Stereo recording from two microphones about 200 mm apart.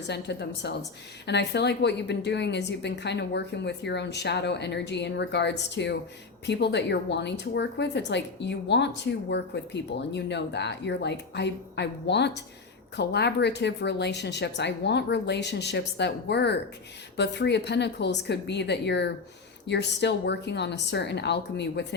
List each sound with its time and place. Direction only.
0.1 s a woman's voice: 60° left (ahead or behind)